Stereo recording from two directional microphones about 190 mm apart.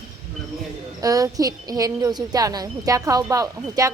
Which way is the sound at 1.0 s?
20° right (ahead or behind).